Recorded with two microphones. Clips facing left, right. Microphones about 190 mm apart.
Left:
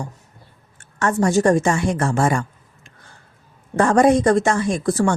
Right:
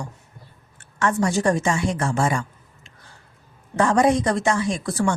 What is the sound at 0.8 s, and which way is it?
A woman's voice, 45° left (ahead or behind).